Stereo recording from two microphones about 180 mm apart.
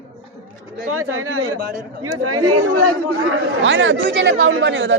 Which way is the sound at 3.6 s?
90° right.